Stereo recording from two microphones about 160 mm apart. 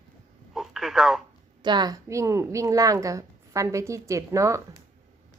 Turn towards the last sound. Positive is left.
turn(degrees=-20)  # may be behind; listen again after turning